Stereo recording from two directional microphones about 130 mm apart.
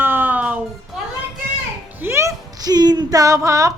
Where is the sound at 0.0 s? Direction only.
15° right (ahead or behind).